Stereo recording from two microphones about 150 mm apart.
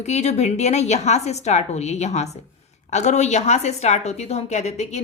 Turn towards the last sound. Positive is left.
turn(degrees=45)  # may be behind; listen again after turning